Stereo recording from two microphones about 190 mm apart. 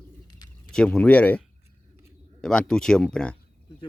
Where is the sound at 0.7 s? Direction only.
5° left (ahead or behind).